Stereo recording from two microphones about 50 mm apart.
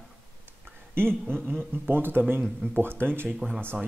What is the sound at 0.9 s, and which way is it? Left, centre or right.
Speech, right.